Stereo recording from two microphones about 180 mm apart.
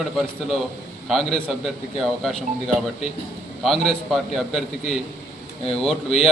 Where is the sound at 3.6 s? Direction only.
Centre (ahead or behind).